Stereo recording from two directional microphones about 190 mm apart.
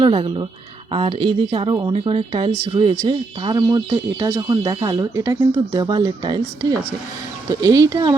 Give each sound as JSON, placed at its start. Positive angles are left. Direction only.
{"t": 0.0, "sound": "speech", "side_deg": -25}